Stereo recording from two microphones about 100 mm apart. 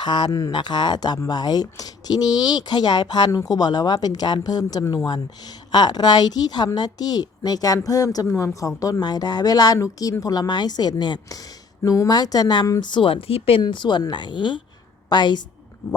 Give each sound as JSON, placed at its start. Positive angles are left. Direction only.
{"t": 0.0, "sound": "speech", "side_deg": 50}
{"t": 0.3, "sound": "a woman's voice", "side_deg": 35}
{"t": 0.5, "sound": "a woman's voice", "side_deg": 50}
{"t": 12.8, "sound": "speech", "side_deg": 55}
{"t": 13.6, "sound": "speech", "side_deg": 50}